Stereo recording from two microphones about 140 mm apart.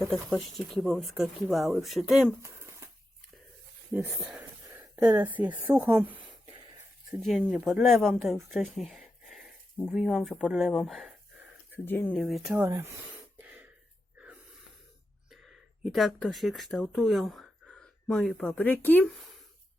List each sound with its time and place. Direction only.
0.1 s speech: centre (ahead or behind)
2.4 s a sound: 20° right (ahead or behind)
3.9 s speech: 5° right (ahead or behind)
11.9 s speech: 15° left (ahead or behind)
12.1 s speech: centre (ahead or behind)
12.5 s speech: 20° right (ahead or behind)
13.4 s throat clearing: 10° right (ahead or behind)
15.3 s speech: centre (ahead or behind)